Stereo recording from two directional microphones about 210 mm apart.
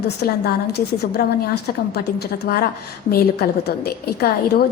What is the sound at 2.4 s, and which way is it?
A woman's voice, 50° left (ahead or behind).